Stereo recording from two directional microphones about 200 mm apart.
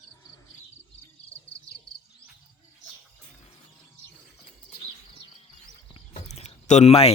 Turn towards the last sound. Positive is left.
turn(degrees=30)  # may be behind; listen again after turning